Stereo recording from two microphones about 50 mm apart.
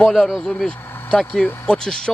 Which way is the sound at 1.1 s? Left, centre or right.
Centre.